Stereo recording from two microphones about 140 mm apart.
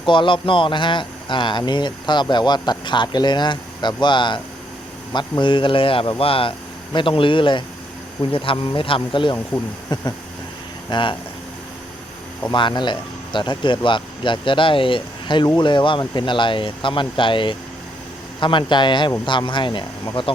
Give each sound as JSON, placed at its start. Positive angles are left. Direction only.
{"t": 0.0, "sound": "speech", "side_deg": 35}
{"t": 5.4, "sound": "speech", "side_deg": 35}
{"t": 9.9, "sound": "a sound", "side_deg": 30}
{"t": 10.8, "sound": "speech", "side_deg": 35}
{"t": 12.5, "sound": "speech", "side_deg": 35}